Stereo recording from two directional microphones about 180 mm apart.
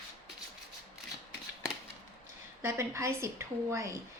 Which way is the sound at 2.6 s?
15° right (ahead or behind).